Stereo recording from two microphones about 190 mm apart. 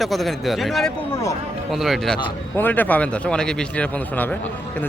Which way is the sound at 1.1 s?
15° left (ahead or behind).